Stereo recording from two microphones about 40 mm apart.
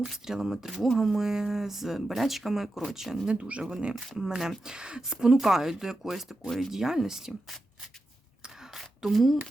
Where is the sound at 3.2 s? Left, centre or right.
Right.